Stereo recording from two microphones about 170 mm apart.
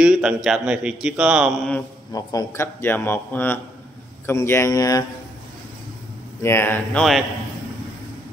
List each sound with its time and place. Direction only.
0.0 s a man's voice: 5° right (ahead or behind)
2.1 s speech: 20° left (ahead or behind)
6.4 s speech: 15° left (ahead or behind)